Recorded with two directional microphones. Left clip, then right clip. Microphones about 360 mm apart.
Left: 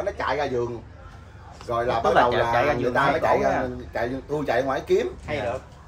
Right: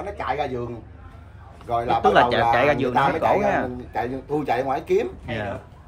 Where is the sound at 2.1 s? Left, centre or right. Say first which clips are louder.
Right 1 dB; right.